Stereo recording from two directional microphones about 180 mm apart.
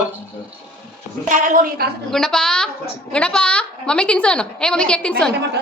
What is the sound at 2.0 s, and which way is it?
A woman's voice, 5° left (ahead or behind).